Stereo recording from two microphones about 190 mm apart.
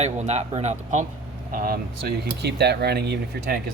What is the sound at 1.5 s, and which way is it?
Speech, 50° right (ahead or behind).